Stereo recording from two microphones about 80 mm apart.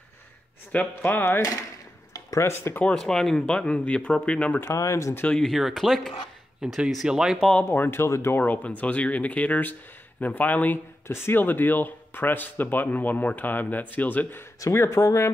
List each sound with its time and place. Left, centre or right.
0.7 s speech: centre
2.1 s speech: left
2.8 s speech: centre
4.6 s speech: left
5.3 s speech: centre
7.7 s speech: left
8.4 s speech: left
14.6 s speech: left